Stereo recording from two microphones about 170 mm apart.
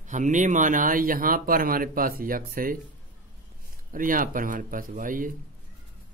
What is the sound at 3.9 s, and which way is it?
Speech, 55° right (ahead or behind).